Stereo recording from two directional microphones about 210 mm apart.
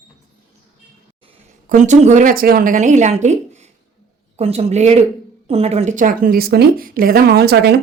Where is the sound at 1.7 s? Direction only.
35° right (ahead or behind); by 7.8 s 50° right (ahead or behind).